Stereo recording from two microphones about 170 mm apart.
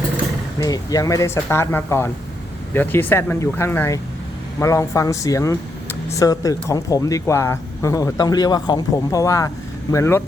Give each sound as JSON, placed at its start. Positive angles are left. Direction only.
{"t": 0.6, "sound": "speech", "side_deg": 20}